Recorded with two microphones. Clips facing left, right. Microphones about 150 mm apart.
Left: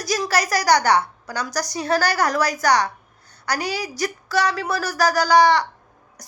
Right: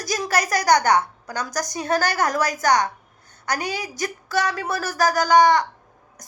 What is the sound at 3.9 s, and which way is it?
A woman's voice, 50° right (ahead or behind).